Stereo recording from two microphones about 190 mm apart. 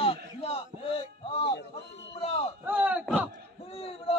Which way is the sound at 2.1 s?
30° left (ahead or behind).